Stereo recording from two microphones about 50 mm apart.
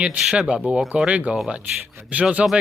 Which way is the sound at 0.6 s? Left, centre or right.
Centre.